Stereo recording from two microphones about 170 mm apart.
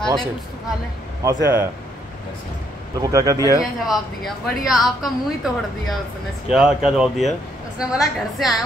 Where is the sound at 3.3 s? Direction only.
20° left (ahead or behind).